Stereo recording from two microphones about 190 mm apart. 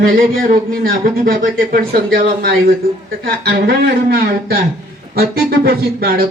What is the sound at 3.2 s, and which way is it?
Speech, 50° right (ahead or behind).